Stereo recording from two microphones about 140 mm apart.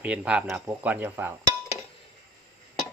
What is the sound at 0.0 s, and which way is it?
Speech, 10° right (ahead or behind).